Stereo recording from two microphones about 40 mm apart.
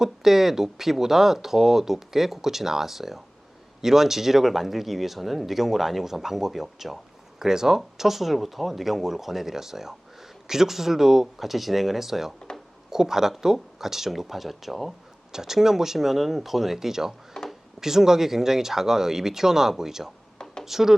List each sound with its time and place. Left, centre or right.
0.0 s speech: centre
12.5 s a sound: left
12.9 s speech: centre
15.3 s speech: centre
17.4 s a sound: centre
17.7 s speech: centre